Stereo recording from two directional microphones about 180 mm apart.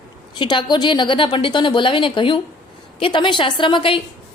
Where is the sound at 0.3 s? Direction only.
25° left (ahead or behind).